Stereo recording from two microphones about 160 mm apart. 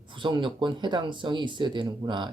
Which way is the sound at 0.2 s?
30° right (ahead or behind).